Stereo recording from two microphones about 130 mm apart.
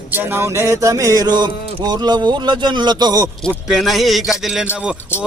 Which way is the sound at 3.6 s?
Centre (ahead or behind).